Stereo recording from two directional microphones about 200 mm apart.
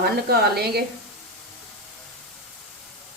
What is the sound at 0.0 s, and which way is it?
Speech, 50° right (ahead or behind).